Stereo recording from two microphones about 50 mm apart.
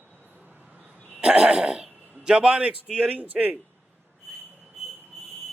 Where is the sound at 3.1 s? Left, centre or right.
Right.